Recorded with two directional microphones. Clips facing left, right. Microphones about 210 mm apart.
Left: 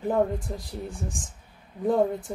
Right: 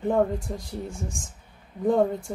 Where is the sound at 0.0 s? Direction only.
5° left (ahead or behind).